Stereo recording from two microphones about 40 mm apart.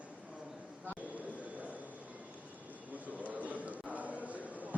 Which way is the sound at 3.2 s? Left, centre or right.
Right.